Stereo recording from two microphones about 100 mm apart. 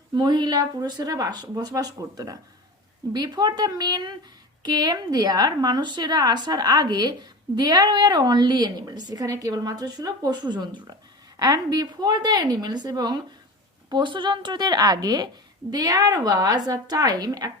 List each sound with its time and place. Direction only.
0.1 s a woman's voice: 45° right (ahead or behind)